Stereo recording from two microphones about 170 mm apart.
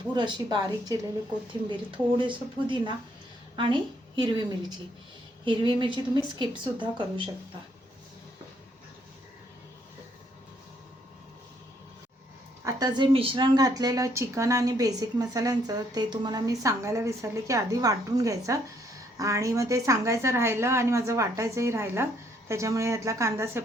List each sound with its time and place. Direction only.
0.1 s a woman's voice: 25° right (ahead or behind)
2.1 s a woman's voice: 30° right (ahead or behind)
5.5 s a woman's voice: 30° right (ahead or behind)
12.6 s a woman's voice: 25° right (ahead or behind)